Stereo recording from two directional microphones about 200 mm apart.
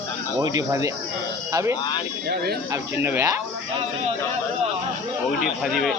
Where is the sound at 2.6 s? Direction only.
15° right (ahead or behind).